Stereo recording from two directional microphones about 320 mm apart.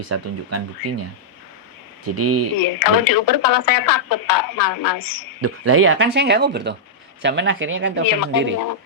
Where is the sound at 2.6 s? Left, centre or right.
Left.